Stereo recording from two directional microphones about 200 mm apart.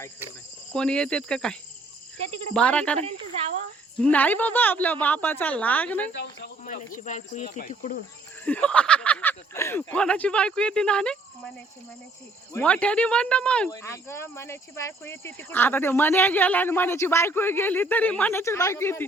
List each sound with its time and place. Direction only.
0.7 s speech: 5° left (ahead or behind)
4.0 s speech: 10° left (ahead or behind)
6.7 s speech: 40° left (ahead or behind)
8.4 s speech: 5° left (ahead or behind)
12.5 s speech: 5° left (ahead or behind)